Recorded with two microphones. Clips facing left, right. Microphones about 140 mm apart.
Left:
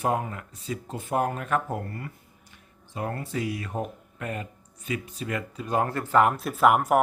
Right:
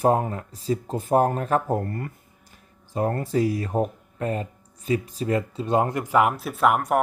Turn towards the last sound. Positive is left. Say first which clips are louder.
# even
turn(degrees=5)  # may be behind; listen again after turning